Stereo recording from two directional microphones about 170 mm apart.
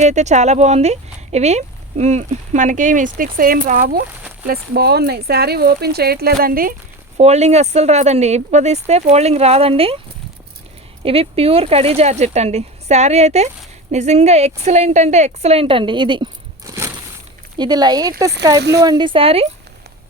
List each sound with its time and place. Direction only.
0.0 s speech: 45° right (ahead or behind)
7.2 s speech: 40° right (ahead or behind)
11.0 s speech: 35° right (ahead or behind)